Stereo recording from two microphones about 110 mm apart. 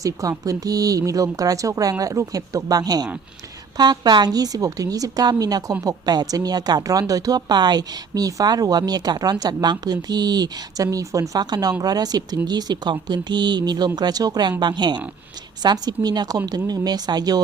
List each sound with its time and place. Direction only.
0.0 s a woman's voice: 30° right (ahead or behind)